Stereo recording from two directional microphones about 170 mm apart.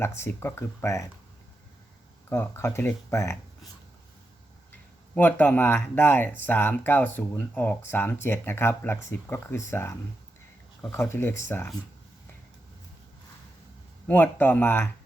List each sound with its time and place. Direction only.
0.0 s speech: 15° left (ahead or behind)
2.3 s speech: 15° left (ahead or behind)
5.1 s speech: 10° left (ahead or behind)
14.1 s speech: 10° left (ahead or behind)